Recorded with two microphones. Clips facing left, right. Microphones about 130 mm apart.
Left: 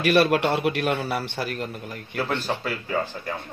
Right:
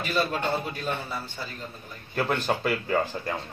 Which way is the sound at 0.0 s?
80° left.